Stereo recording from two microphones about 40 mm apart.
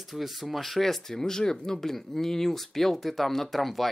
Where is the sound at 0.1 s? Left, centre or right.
Centre.